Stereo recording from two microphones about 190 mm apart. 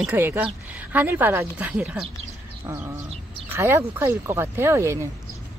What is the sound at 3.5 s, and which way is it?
Speech, 10° right (ahead or behind).